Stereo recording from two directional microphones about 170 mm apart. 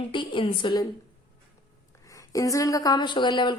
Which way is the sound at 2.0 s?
20° left (ahead or behind).